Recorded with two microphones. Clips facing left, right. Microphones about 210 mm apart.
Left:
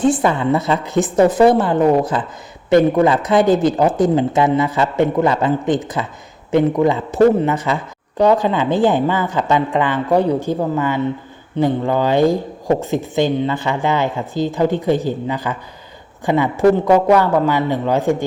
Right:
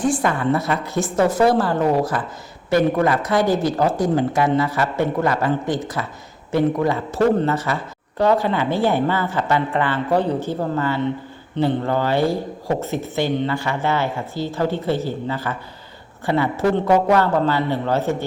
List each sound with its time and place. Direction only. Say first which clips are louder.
0.0 s speech: left 4 dB; 25° left (ahead or behind)